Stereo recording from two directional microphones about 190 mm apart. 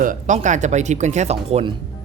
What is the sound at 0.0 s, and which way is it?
Speech, 45° right (ahead or behind).